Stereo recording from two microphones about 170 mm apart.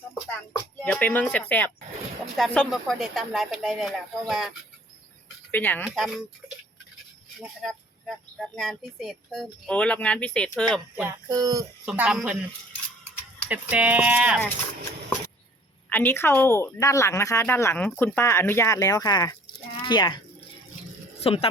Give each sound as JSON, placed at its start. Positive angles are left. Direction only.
{"t": 0.3, "sound": "a woman's voice", "side_deg": 10}
{"t": 5.5, "sound": "speech", "side_deg": 10}
{"t": 7.3, "sound": "speech", "side_deg": 0}
{"t": 10.9, "sound": "speech", "side_deg": -10}
{"t": 11.9, "sound": "speech", "side_deg": -5}
{"t": 13.5, "sound": "speech", "side_deg": -10}
{"t": 15.9, "sound": "a woman's voice", "side_deg": 10}